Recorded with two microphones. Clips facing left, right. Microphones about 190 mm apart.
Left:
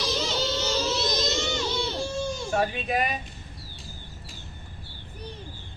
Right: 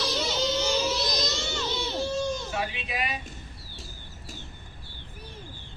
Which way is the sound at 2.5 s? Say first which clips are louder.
Left 6 dB; 45° left (ahead or behind).